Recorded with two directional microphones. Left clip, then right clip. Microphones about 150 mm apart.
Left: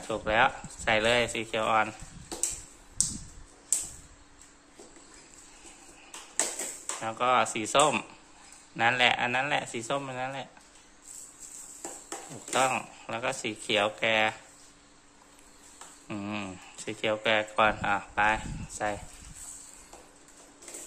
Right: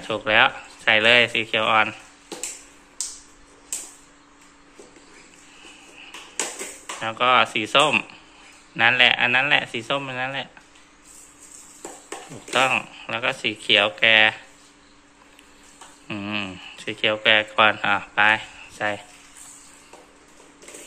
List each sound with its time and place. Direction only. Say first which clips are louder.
0.0 s speech: right 7 dB; 15° left (ahead or behind)
7.0 s speech: right 7 dB; 15° left (ahead or behind)
12.5 s speech: right 7 dB; 15° left (ahead or behind)
16.1 s speech: right 8 dB; 20° left (ahead or behind)